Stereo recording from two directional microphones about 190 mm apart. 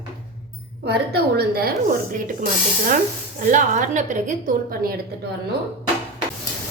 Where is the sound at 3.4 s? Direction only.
40° right (ahead or behind).